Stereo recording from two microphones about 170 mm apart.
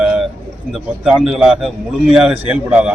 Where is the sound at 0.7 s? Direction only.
5° right (ahead or behind).